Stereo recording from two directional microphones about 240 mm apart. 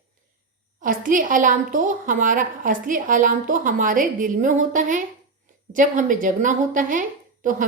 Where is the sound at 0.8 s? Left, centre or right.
Right.